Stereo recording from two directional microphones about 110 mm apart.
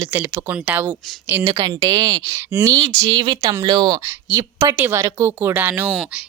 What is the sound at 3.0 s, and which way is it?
Speech, 40° right (ahead or behind).